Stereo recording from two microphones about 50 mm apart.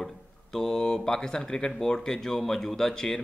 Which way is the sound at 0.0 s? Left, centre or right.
Centre.